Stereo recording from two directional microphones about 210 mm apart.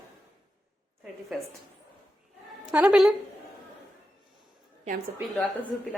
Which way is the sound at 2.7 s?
5° right (ahead or behind).